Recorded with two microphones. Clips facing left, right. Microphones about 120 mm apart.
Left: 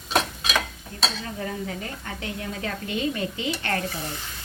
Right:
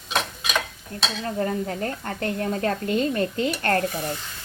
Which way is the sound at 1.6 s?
50° right (ahead or behind).